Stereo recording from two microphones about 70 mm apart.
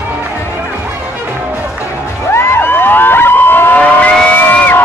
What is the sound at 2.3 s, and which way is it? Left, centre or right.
Vehicle, left.